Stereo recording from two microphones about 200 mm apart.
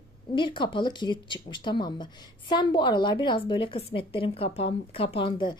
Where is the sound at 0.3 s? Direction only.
25° left (ahead or behind).